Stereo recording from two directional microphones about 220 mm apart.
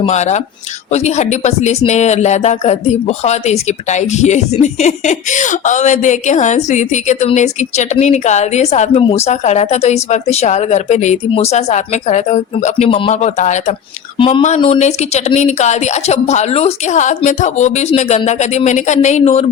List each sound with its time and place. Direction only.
0.0 s a woman's voice: 30° left (ahead or behind)